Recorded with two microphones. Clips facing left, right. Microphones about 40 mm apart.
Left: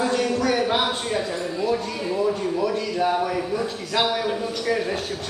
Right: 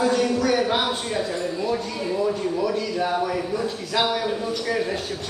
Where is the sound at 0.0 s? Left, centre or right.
Centre.